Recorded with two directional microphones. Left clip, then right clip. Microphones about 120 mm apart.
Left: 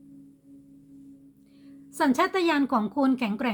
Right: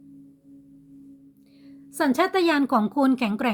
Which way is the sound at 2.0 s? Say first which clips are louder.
Right 2 dB; 25° right (ahead or behind).